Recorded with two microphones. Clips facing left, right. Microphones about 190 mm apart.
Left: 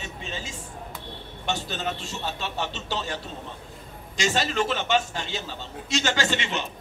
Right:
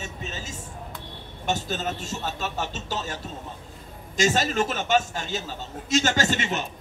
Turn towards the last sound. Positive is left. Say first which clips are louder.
# right 2 dB
turn(degrees=-45)  # may be behind; listen again after turning